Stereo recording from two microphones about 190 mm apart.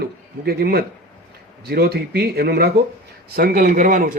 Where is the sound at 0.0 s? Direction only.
55° right (ahead or behind).